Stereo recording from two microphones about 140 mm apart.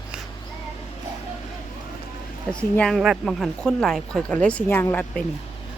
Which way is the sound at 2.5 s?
5° left (ahead or behind).